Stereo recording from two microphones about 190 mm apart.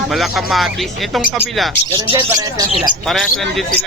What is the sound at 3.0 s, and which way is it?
Speech, centre (ahead or behind).